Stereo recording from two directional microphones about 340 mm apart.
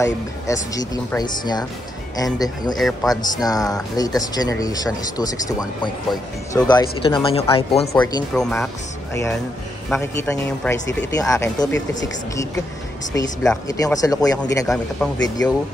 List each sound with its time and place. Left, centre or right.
0.7 s speech: centre
7.9 s speech: centre
13.1 s speech: centre